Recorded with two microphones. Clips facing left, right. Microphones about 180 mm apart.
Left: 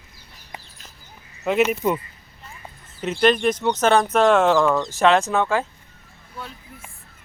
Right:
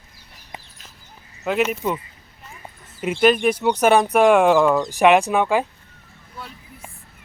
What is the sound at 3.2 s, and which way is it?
Speech, 5° right (ahead or behind).